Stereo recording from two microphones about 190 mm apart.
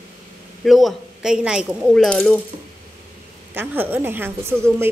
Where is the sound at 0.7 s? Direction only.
Centre (ahead or behind).